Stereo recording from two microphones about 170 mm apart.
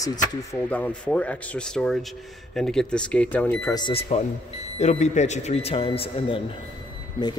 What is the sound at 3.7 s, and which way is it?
Speech, 25° left (ahead or behind).